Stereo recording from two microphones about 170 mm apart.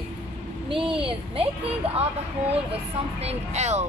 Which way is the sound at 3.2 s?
40° right (ahead or behind).